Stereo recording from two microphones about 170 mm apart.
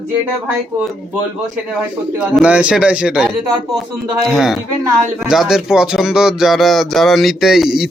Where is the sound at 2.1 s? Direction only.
5° right (ahead or behind).